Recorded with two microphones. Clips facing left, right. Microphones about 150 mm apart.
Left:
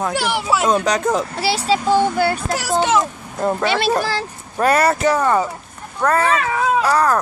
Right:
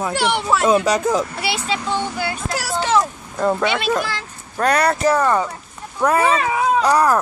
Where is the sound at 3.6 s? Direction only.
35° left (ahead or behind).